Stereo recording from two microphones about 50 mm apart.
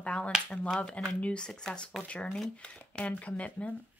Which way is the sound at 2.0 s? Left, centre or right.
Left.